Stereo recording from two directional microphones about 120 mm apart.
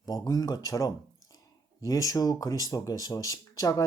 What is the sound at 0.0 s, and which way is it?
Speech, 30° left (ahead or behind).